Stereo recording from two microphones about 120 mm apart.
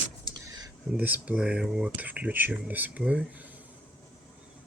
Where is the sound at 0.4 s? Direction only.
35° right (ahead or behind).